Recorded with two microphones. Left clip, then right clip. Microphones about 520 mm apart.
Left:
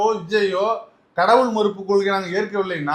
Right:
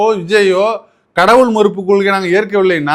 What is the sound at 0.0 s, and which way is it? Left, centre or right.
A man's voice, right.